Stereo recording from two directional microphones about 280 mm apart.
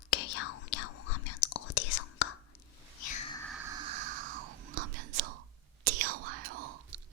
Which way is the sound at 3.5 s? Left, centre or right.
Centre.